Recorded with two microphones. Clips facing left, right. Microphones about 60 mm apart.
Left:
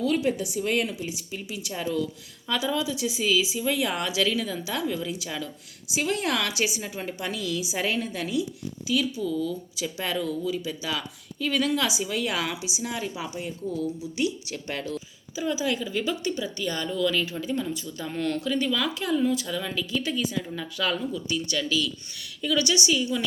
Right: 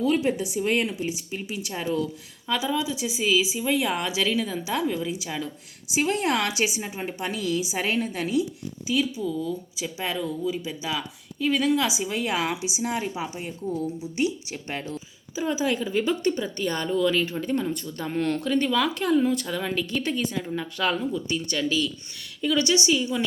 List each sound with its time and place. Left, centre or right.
0.0 s a woman's voice: right
2.5 s a woman's voice: centre
12.1 s a woman's voice: right
16.2 s a woman's voice: right
17.0 s a woman's voice: right
17.5 s speech: right
18.0 s a woman's voice: right
19.5 s a woman's voice: right
20.4 s a woman's voice: right